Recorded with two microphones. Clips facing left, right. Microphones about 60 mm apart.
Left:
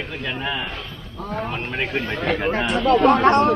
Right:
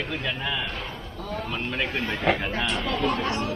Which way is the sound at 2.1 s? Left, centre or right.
Centre.